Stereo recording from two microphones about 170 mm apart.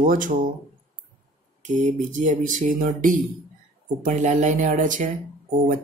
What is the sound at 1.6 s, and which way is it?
Speech, 45° right (ahead or behind).